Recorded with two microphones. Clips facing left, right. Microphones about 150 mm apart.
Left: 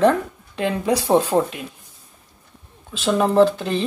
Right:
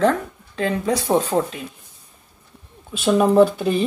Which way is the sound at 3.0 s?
10° right (ahead or behind).